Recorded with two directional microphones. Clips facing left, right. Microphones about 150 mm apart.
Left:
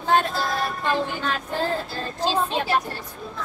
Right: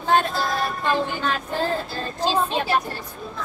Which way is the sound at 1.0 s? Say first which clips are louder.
Right 2 dB; 15° right (ahead or behind).